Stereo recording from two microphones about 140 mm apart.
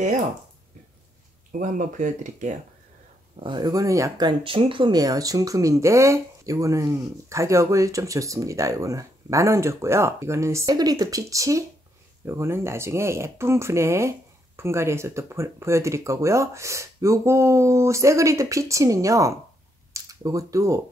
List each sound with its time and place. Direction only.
1.5 s speech: 65° right (ahead or behind)
3.3 s speech: 35° right (ahead or behind)